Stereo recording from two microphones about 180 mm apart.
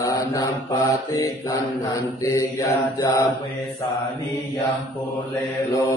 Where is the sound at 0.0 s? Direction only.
20° left (ahead or behind).